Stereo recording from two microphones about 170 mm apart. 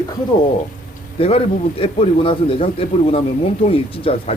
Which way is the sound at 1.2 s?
35° left (ahead or behind).